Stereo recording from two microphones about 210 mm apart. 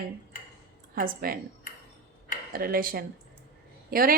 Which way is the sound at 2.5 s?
45° right (ahead or behind).